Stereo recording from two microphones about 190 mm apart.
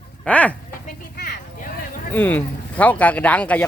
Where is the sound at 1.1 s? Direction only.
55° left (ahead or behind).